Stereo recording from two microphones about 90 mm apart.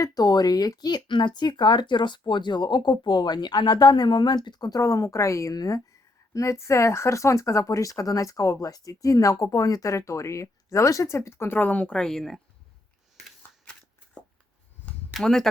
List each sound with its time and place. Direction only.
0.0 s speech: 45° left (ahead or behind); by 12.4 s 5° left (ahead or behind)
15.1 s speech: 5° left (ahead or behind)